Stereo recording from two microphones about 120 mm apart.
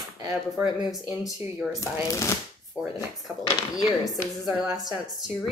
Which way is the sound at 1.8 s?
25° left (ahead or behind).